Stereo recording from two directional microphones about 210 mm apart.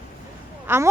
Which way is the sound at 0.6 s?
10° right (ahead or behind).